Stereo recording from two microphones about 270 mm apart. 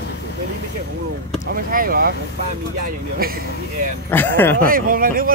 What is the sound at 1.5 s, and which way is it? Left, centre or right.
Speech, right.